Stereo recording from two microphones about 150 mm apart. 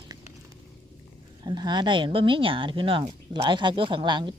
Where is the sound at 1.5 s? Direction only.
30° right (ahead or behind).